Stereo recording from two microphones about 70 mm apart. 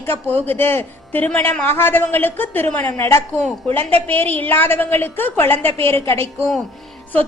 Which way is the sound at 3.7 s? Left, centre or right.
Left.